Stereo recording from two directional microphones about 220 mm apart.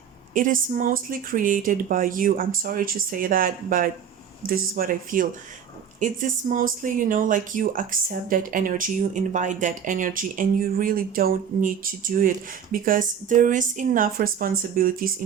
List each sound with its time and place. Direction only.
0.3 s speech: 40° right (ahead or behind)